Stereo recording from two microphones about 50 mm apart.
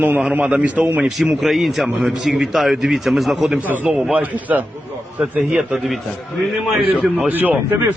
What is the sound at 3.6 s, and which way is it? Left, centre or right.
A man's voice, right.